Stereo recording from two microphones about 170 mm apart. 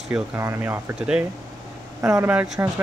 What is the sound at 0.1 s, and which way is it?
Speech, 15° right (ahead or behind).